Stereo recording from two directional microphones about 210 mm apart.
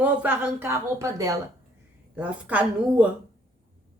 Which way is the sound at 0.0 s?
10° right (ahead or behind).